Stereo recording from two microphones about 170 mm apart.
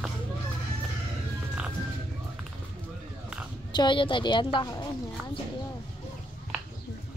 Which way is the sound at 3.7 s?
30° left (ahead or behind).